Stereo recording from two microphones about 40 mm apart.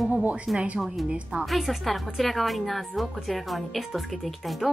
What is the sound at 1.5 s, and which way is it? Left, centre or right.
A woman's voice, centre.